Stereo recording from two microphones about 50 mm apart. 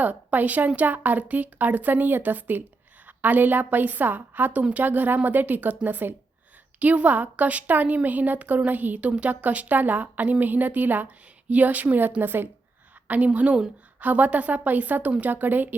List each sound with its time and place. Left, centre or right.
0.0 s speech: right
13.1 s a woman's voice: right